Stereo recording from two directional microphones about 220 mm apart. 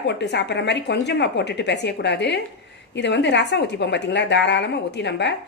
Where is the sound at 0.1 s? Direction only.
50° left (ahead or behind).